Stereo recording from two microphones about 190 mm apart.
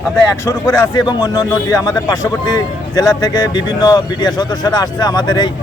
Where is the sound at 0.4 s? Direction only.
20° left (ahead or behind).